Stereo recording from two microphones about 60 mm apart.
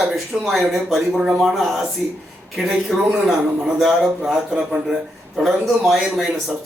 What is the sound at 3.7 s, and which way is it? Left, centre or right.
Speech, centre.